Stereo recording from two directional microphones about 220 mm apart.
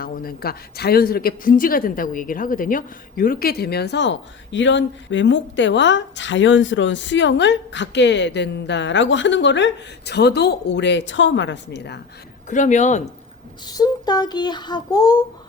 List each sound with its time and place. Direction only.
0.0 s speech: 40° left (ahead or behind)
12.5 s speech: 35° left (ahead or behind)
13.7 s a sound: 15° left (ahead or behind)